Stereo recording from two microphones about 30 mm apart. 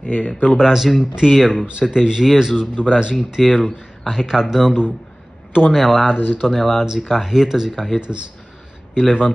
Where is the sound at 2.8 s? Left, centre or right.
Left.